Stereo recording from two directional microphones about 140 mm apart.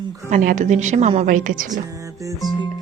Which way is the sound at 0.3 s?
65° right (ahead or behind).